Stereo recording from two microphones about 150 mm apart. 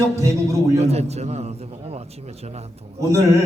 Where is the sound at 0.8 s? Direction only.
45° right (ahead or behind).